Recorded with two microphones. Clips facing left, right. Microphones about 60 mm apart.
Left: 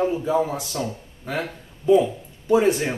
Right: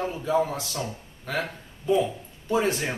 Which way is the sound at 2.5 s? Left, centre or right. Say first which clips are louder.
Left 6 dB; centre.